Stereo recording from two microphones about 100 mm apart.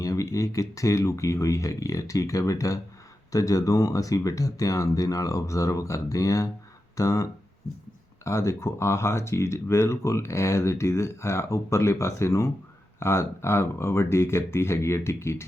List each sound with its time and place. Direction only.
0.0 s speech: 35° left (ahead or behind)